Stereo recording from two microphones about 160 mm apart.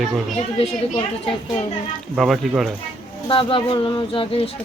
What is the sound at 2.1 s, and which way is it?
Speech, centre (ahead or behind).